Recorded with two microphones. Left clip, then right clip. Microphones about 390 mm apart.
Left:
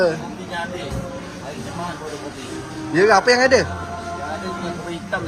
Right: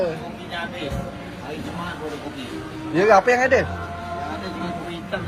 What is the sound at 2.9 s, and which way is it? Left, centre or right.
Speech, centre.